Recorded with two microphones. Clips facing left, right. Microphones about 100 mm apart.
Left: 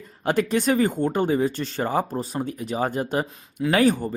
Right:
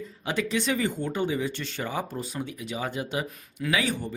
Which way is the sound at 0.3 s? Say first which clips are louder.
Left 6 dB; 50° left (ahead or behind).